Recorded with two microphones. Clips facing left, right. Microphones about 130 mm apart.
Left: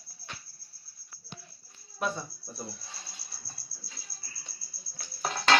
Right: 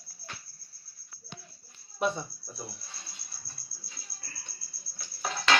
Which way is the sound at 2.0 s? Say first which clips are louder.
Right 3 dB; 20° right (ahead or behind).